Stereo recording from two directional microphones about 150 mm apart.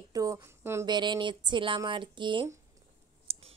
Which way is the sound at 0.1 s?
25° right (ahead or behind).